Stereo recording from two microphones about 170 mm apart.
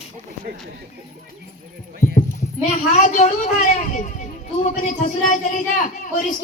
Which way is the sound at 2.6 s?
45° left (ahead or behind).